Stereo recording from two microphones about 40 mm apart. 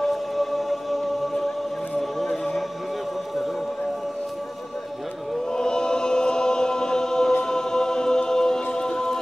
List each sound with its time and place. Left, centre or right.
0.0 s music: centre
5.5 s choir: centre
8.7 s music: centre